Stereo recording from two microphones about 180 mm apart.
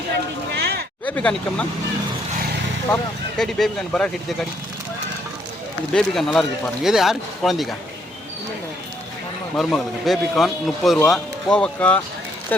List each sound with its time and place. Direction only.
0.5 s a sound: 65° right (ahead or behind)
1.0 s speech: 10° left (ahead or behind)
3.3 s speech: centre (ahead or behind)
5.9 s speech: 5° left (ahead or behind)
9.6 s speech: 5° left (ahead or behind)